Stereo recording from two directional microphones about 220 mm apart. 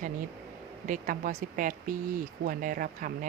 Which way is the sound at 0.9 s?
35° right (ahead or behind).